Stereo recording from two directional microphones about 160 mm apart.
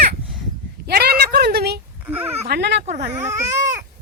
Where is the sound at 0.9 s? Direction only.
80° right.